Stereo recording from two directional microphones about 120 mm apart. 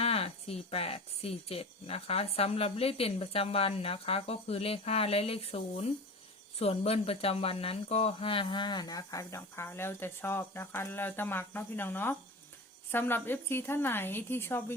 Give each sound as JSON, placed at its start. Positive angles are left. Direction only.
{"t": 0.0, "sound": "a woman's voice", "side_deg": 55}